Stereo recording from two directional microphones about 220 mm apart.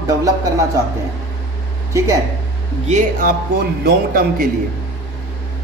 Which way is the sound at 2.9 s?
35° right (ahead or behind).